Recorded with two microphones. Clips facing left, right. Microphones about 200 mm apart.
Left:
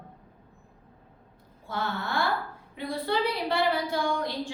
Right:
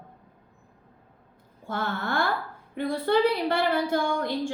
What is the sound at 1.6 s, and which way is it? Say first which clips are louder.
Speech: right 2 dB; 50° right (ahead or behind).